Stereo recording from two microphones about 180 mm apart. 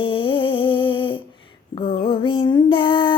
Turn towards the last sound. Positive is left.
turn(degrees=25)  # may be behind; listen again after turning